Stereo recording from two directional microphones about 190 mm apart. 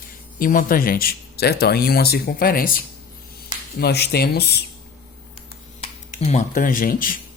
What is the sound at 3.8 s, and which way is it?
Speech, 60° left (ahead or behind).